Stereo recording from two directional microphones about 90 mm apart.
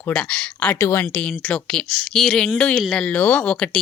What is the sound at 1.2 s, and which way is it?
Speech, 10° left (ahead or behind).